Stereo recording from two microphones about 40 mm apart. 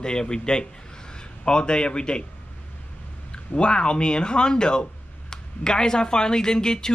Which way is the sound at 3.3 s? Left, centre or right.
Left.